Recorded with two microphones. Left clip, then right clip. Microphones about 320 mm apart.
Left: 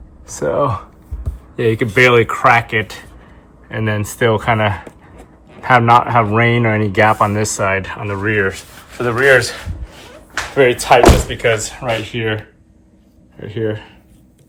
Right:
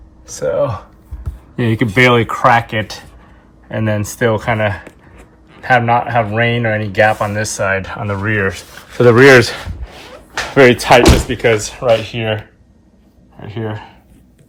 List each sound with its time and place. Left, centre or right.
0.3 s speech: centre
1.5 s a man's voice: centre
11.3 s speech: centre
13.4 s speech: centre